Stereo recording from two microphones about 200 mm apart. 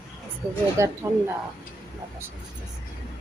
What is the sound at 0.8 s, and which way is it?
Speech, 15° right (ahead or behind).